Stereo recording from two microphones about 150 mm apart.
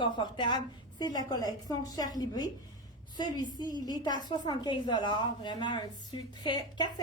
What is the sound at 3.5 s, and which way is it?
A woman's voice, 30° left (ahead or behind).